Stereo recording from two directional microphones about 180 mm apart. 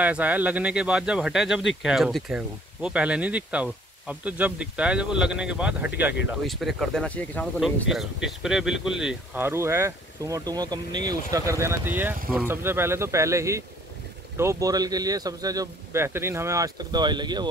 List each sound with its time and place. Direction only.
0.0 s speech: 10° right (ahead or behind); by 17.5 s 25° right (ahead or behind)